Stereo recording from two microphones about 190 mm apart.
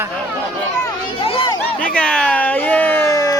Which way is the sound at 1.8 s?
5° left (ahead or behind).